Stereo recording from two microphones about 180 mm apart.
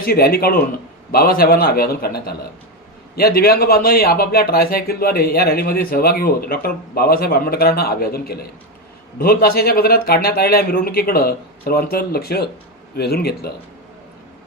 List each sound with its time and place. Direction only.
0.0 s a man's voice: 55° left (ahead or behind)